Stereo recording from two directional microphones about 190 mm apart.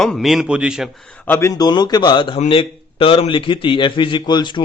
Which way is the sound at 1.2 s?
15° left (ahead or behind).